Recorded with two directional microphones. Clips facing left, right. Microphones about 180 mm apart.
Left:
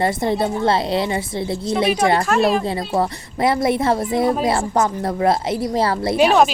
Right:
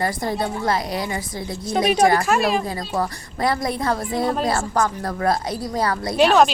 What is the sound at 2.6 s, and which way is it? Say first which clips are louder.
Speech: left 4 dB; 25° left (ahead or behind).